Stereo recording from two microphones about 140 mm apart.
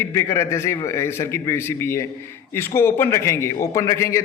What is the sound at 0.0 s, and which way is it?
A man's voice, 20° left (ahead or behind).